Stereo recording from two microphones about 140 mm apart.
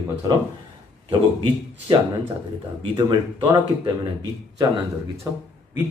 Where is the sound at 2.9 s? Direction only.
35° right (ahead or behind).